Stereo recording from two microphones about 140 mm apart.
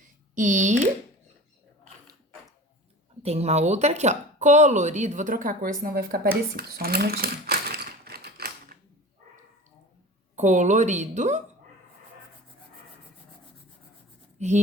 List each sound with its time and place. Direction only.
0.3 s speech: 60° right (ahead or behind)
3.2 s speech: 50° right (ahead or behind); by 7.2 s 90° right
7.5 s typewriter: 90° right
7.9 s a sound: 90° right
10.3 s speech: 60° right (ahead or behind)
14.3 s speech: 55° right (ahead or behind)